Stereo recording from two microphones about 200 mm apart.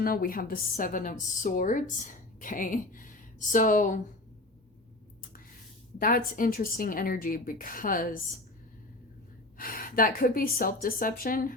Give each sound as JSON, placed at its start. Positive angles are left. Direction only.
{"t": 0.0, "sound": "speech", "side_deg": 45}
{"t": 6.0, "sound": "speech", "side_deg": 45}
{"t": 9.6, "sound": "speech", "side_deg": 45}